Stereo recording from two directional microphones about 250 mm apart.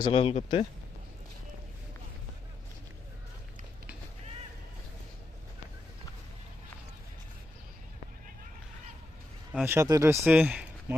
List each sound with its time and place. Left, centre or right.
0.0 s speech: left
9.5 s speech: centre